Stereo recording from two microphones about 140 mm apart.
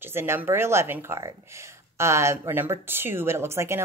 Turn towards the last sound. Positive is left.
turn(degrees=-20)  # may be behind; listen again after turning